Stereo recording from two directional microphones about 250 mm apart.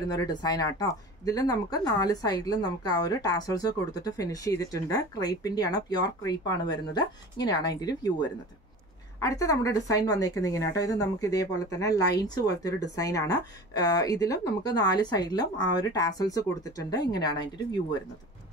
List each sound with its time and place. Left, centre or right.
0.1 s speech: centre